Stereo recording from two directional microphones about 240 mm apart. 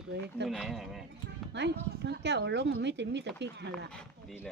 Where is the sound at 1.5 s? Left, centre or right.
Right.